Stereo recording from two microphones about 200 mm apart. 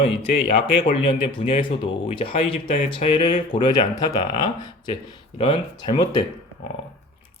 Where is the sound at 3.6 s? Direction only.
20° left (ahead or behind).